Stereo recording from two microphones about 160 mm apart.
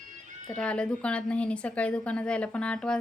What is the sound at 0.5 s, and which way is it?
Speech, 5° left (ahead or behind).